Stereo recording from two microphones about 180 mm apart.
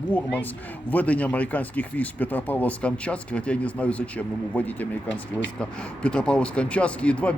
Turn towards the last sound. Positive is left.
turn(degrees=5)  # may be behind; listen again after turning